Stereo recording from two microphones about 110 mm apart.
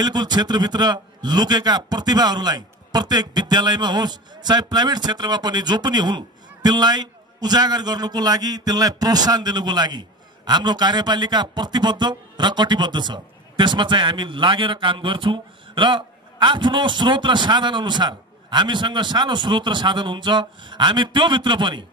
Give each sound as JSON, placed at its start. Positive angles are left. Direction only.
{"t": 0.0, "sound": "a man's voice", "side_deg": -40}